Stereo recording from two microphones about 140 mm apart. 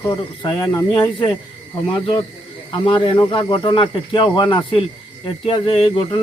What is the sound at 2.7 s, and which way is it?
Speech, 35° left (ahead or behind).